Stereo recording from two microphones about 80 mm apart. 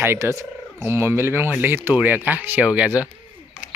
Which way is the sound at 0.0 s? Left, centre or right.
Right.